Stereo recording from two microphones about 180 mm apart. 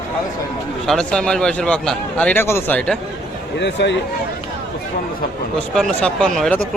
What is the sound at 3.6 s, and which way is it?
Speech, 75° left (ahead or behind).